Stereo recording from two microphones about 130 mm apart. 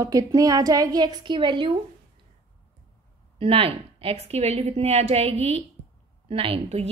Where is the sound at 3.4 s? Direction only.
45° right (ahead or behind).